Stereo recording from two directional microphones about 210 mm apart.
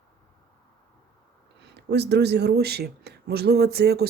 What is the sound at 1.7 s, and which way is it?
Speech, 55° right (ahead or behind).